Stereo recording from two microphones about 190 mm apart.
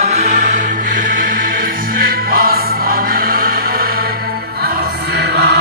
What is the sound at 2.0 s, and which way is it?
Music, 50° right (ahead or behind).